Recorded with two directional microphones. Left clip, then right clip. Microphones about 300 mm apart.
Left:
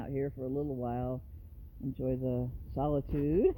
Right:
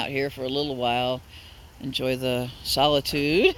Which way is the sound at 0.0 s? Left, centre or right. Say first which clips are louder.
Right 10 dB; centre.